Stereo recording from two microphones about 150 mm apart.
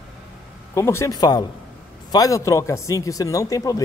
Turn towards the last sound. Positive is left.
turn(degrees=20)  # may be behind; listen again after turning